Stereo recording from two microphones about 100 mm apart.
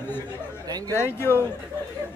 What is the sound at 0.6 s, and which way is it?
Speech, 40° right (ahead or behind).